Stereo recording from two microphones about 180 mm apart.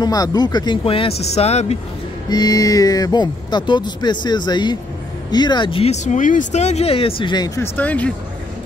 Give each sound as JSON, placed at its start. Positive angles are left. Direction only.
{"t": 0.0, "sound": "speech", "side_deg": 20}
{"t": 2.2, "sound": "speech", "side_deg": 20}